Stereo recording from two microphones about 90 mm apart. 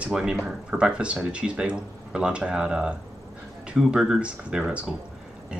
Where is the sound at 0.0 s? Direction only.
10° right (ahead or behind).